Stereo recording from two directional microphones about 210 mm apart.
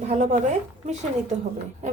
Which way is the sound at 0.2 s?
35° right (ahead or behind).